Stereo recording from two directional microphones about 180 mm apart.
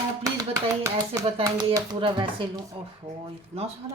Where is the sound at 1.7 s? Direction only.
25° right (ahead or behind).